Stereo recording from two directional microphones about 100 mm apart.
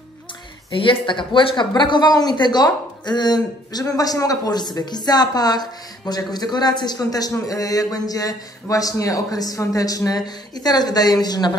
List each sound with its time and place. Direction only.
0.7 s speech: 55° left (ahead or behind)